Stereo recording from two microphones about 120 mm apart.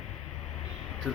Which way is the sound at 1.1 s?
5° right (ahead or behind).